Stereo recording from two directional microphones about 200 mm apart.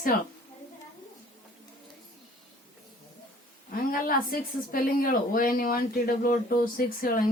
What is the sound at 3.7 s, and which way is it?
Speech, 45° left (ahead or behind).